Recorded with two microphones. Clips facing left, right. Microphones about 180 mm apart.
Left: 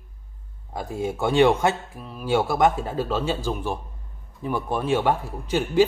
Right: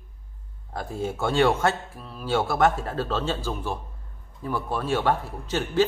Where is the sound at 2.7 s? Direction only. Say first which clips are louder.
Left 2 dB; centre (ahead or behind).